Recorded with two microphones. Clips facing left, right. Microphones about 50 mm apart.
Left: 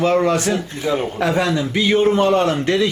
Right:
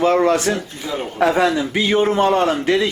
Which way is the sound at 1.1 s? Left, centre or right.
Centre.